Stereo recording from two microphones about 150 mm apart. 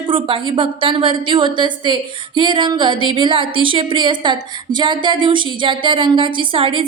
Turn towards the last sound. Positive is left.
turn(degrees=-35)  # may be behind; listen again after turning